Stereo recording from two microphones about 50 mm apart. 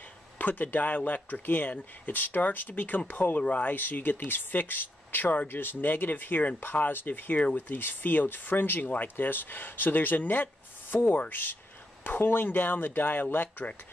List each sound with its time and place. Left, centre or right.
0.4 s speech: left
3.7 s speech: left